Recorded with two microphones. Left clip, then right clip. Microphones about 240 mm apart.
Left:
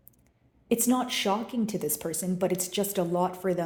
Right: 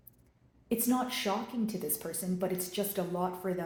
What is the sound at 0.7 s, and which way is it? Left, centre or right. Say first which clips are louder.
A woman's voice: left 5 dB; left.